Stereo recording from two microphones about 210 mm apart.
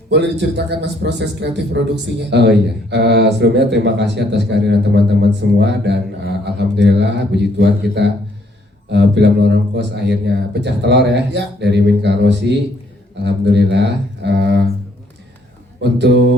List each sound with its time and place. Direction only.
0.1 s speech: 55° right (ahead or behind)
15.8 s speech: 55° right (ahead or behind)